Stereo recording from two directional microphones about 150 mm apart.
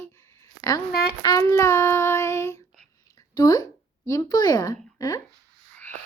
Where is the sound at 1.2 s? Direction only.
25° left (ahead or behind).